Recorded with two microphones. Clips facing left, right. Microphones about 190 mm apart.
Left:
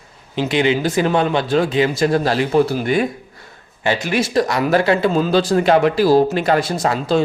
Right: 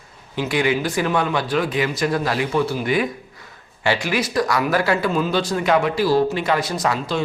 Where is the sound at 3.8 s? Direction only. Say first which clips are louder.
Left 2 dB; 20° left (ahead or behind).